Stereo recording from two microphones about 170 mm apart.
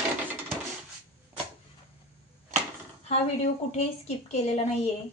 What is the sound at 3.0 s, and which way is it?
A woman's voice, 40° left (ahead or behind).